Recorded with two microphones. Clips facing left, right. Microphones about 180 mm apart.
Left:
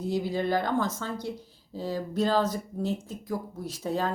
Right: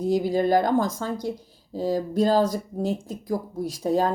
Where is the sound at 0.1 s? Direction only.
40° right (ahead or behind).